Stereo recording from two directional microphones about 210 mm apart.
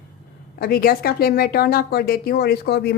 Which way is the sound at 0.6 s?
45° left (ahead or behind).